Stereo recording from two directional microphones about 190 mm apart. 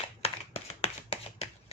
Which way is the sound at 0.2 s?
35° left (ahead or behind).